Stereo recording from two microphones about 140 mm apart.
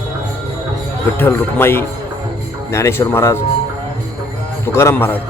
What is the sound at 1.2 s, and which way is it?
A man's voice, 15° left (ahead or behind).